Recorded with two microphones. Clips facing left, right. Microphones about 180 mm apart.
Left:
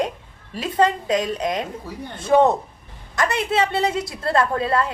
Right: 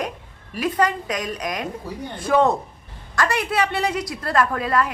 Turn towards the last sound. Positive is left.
turn(degrees=25)  # may be behind; listen again after turning